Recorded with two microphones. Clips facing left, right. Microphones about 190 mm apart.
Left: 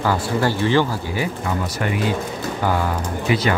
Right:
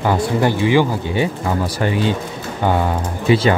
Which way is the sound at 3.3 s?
25° right (ahead or behind).